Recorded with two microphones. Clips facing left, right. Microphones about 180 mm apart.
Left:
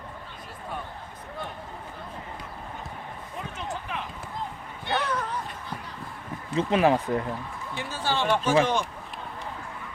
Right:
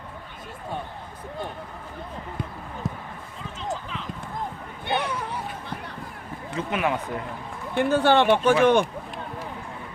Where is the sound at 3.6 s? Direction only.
60° left (ahead or behind).